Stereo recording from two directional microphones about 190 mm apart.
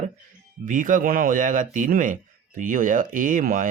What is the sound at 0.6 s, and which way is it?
Speech, 45° right (ahead or behind).